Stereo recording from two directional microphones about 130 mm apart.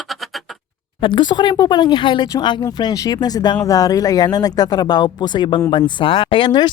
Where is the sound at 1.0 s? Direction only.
35° left (ahead or behind).